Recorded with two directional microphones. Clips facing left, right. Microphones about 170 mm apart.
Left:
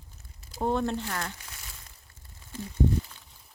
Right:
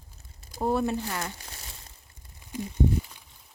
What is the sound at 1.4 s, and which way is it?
Crumpling, 30° right (ahead or behind).